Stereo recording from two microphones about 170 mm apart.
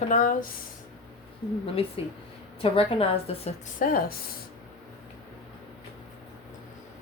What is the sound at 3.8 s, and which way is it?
Speech, 50° left (ahead or behind).